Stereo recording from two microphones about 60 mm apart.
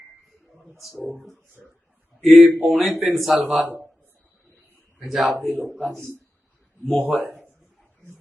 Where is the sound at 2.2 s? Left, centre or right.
Centre.